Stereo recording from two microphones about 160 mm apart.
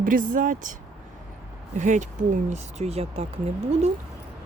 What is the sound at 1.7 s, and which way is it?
Speech, 50° right (ahead or behind).